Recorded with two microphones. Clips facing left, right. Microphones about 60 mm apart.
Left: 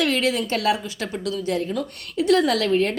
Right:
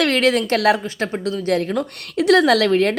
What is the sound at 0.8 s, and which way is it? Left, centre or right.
Speech, right.